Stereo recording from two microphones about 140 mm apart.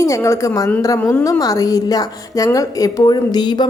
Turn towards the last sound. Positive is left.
turn(degrees=30)  # may be behind; listen again after turning